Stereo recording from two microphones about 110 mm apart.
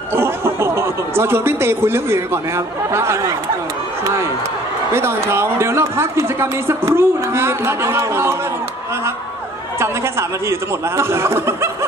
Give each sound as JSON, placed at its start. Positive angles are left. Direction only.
{"t": 0.1, "sound": "speech", "side_deg": -20}
{"t": 4.9, "sound": "speech", "side_deg": -25}
{"t": 9.8, "sound": "speech", "side_deg": -25}